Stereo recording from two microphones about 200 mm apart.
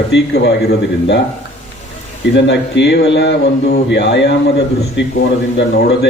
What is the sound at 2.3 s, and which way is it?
Speech, 60° left (ahead or behind).